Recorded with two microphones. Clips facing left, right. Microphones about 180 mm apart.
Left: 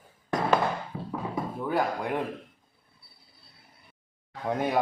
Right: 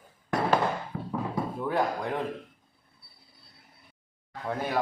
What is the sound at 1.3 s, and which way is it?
Speech, centre (ahead or behind).